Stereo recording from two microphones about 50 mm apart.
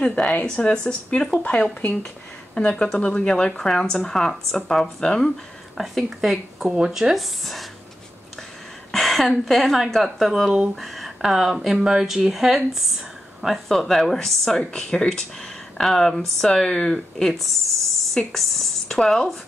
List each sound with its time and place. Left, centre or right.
0.0 s speech: left
2.5 s speech: centre
5.8 s a woman's voice: centre
8.9 s a sound: centre
9.3 s a woman's voice: centre
13.7 s speech: centre